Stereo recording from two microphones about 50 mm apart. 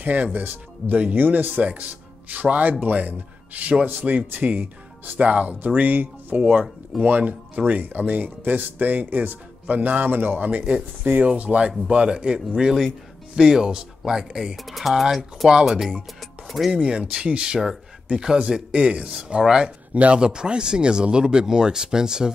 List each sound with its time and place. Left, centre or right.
0.0 s speech: right; by 15.8 s centre
16.2 s music: centre
16.7 s speech: centre